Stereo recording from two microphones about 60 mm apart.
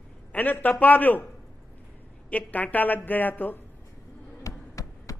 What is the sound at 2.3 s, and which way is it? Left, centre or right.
A man's voice, left.